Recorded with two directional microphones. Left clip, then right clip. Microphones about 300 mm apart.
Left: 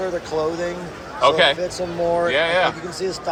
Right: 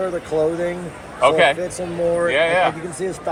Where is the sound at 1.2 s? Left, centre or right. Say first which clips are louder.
Right 1 dB; centre.